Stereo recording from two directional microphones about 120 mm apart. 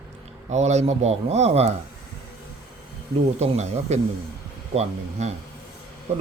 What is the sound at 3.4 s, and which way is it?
Speech, 65° right (ahead or behind).